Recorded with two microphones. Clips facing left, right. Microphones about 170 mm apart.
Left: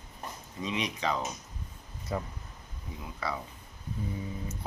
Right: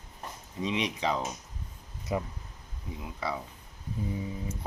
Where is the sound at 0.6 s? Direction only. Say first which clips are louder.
Right 2 dB; 25° right (ahead or behind).